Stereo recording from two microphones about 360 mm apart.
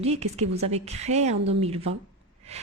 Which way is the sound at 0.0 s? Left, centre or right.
Centre.